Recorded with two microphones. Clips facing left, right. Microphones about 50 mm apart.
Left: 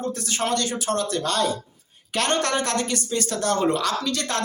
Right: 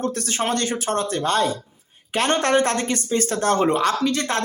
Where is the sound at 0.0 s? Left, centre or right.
Right.